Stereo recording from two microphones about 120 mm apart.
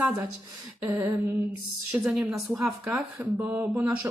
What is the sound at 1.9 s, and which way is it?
Speech, 10° right (ahead or behind).